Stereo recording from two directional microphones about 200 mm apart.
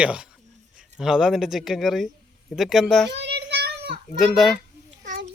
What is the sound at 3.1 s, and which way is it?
Child singing, 60° right (ahead or behind).